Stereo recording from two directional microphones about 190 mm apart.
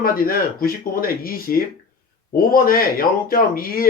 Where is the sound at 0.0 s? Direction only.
50° left (ahead or behind).